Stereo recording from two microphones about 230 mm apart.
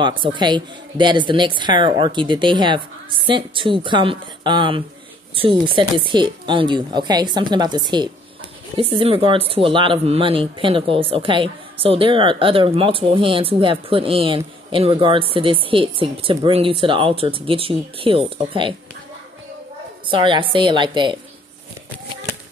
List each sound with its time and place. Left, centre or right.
0.2 s a woman's voice: centre
20.1 s a woman's voice: right